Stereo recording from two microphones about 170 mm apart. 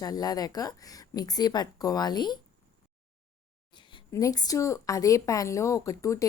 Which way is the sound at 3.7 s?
30° left (ahead or behind).